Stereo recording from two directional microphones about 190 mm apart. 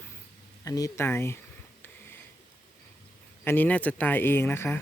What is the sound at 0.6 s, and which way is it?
Speech, 15° left (ahead or behind).